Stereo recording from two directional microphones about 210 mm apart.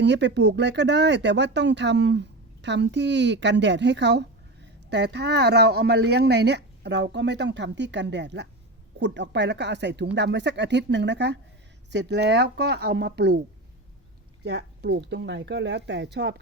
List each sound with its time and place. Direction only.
0.0 s speech: 55° right (ahead or behind)
14.4 s speech: 55° right (ahead or behind)